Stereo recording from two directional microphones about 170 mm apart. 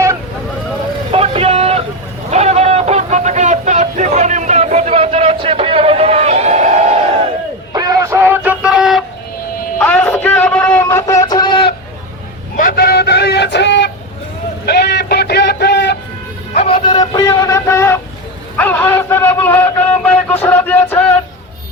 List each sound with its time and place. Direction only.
1.1 s vehicle: 35° right (ahead or behind)
7.7 s music: 20° right (ahead or behind); by 9.0 s centre (ahead or behind)
9.7 s a sound: 10° left (ahead or behind); by 11.7 s 30° left (ahead or behind)
12.5 s vehicle: 55° left (ahead or behind); by 13.9 s 90° left
14.7 s music: 75° left (ahead or behind)
16.6 s a sound: 35° left (ahead or behind); by 21.2 s 10° left (ahead or behind)